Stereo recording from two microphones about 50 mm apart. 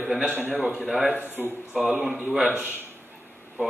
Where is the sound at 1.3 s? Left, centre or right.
Right.